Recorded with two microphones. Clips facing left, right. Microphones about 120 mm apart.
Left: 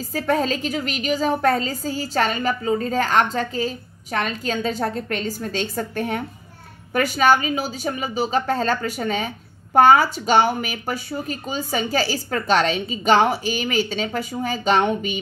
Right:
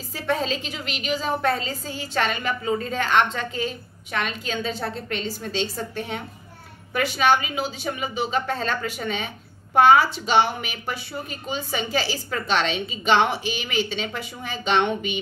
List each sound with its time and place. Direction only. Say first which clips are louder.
0.1 s a woman's voice: left 4 dB; 45° left (ahead or behind)